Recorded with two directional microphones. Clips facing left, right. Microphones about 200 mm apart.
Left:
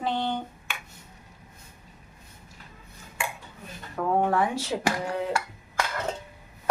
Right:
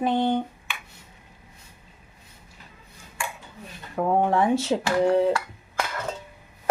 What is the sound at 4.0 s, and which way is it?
Speech, 25° right (ahead or behind).